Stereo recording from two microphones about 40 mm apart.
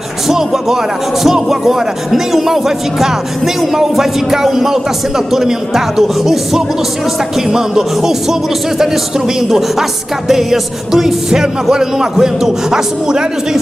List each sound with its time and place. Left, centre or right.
0.3 s speech: centre